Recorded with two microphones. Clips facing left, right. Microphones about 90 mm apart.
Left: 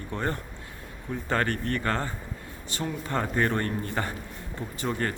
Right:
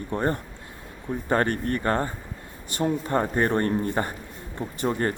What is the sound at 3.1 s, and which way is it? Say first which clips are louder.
Speech: right 1 dB; 25° right (ahead or behind).